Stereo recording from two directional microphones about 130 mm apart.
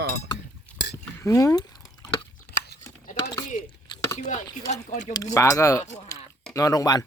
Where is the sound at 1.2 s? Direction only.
25° left (ahead or behind).